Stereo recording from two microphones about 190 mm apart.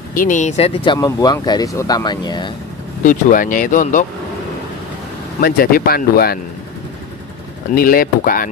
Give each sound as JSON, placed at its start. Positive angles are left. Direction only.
{"t": 0.1, "sound": "speech", "side_deg": 45}
{"t": 0.9, "sound": "speech", "side_deg": 20}
{"t": 3.0, "sound": "speech", "side_deg": 45}
{"t": 5.4, "sound": "speech", "side_deg": 50}
{"t": 7.7, "sound": "speech", "side_deg": 50}